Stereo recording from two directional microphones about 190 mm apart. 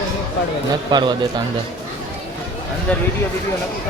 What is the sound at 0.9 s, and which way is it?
Speech, 25° right (ahead or behind).